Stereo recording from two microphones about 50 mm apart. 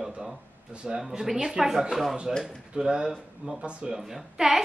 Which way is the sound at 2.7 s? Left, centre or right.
Centre.